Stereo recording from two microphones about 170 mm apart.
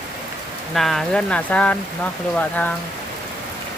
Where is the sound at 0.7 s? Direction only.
Centre (ahead or behind).